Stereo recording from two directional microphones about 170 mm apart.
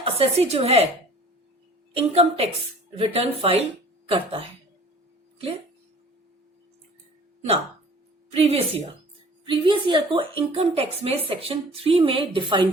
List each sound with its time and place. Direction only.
0.0 s a woman's voice: 35° right (ahead or behind)
2.0 s a woman's voice: 35° right (ahead or behind)
8.3 s a woman's voice: 35° right (ahead or behind)